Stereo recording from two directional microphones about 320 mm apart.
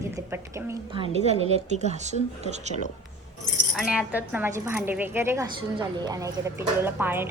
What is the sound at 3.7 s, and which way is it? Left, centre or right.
Speech, centre.